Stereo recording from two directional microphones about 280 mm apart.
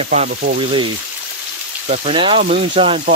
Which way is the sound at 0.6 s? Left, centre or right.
Centre.